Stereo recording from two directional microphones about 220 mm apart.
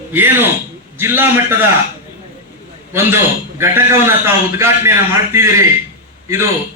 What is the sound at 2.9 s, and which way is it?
A man's voice, 10° right (ahead or behind).